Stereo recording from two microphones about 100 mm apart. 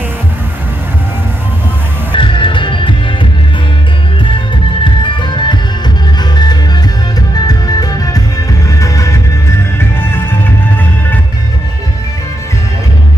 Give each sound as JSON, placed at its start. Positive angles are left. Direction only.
{"t": 2.1, "sound": "music", "side_deg": 55}
{"t": 5.0, "sound": "music", "side_deg": 50}
{"t": 9.8, "sound": "music", "side_deg": 20}